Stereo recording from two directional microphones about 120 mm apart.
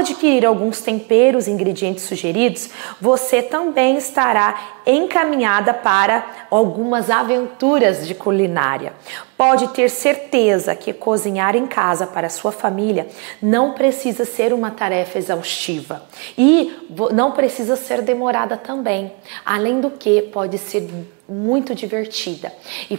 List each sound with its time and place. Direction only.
0.0 s speech: 20° right (ahead or behind)